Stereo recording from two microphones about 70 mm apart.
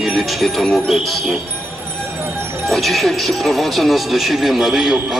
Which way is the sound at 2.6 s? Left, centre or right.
Centre.